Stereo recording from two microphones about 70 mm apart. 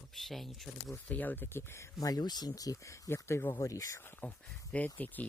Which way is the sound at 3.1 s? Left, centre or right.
Left.